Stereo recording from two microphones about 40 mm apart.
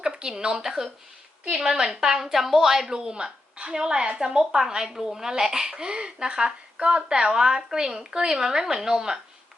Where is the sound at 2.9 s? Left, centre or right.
Centre.